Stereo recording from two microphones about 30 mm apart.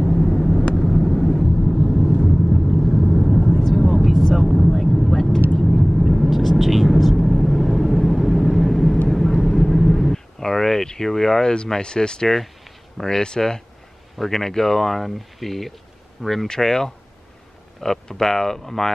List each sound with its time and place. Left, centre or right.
0.0 s vehicle: centre
10.1 s a sound: centre
10.9 s speech: centre
11.4 s speech: left
14.1 s speech: centre
14.4 s speech: centre